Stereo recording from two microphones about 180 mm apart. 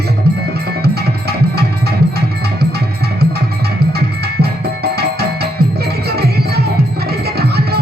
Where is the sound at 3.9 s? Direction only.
65° right (ahead or behind).